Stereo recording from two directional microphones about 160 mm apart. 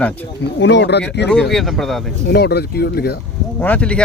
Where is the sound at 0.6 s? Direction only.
90° left.